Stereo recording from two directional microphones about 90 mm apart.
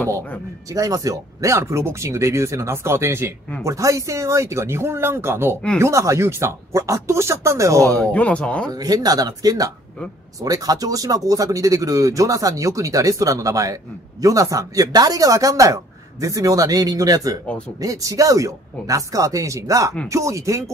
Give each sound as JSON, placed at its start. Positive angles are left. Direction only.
{"t": 0.7, "sound": "speech", "side_deg": -40}
{"t": 8.1, "sound": "speech", "side_deg": 15}
{"t": 8.7, "sound": "speech", "side_deg": -45}